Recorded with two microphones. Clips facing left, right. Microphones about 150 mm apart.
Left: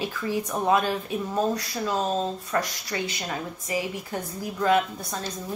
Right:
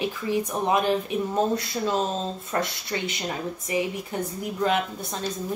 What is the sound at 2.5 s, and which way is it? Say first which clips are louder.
Speech: even; 25° right (ahead or behind).